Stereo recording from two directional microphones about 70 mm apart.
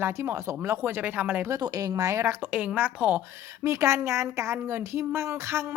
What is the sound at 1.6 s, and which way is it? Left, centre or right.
Speech, right.